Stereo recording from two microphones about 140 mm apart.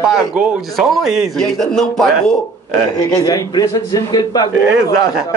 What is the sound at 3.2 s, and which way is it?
A man's voice, 25° left (ahead or behind).